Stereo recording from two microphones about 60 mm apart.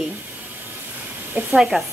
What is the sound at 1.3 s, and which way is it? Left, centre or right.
Speech, centre.